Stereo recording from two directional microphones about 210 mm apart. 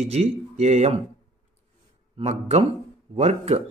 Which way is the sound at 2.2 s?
30° right (ahead or behind).